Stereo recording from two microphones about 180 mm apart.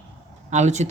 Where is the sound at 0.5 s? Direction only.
40° right (ahead or behind).